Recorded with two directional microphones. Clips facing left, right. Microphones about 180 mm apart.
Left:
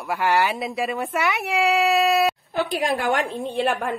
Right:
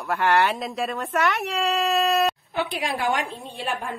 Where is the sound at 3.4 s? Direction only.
65° left (ahead or behind).